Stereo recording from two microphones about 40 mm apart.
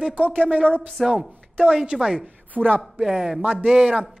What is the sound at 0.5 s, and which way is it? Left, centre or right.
Speech, right.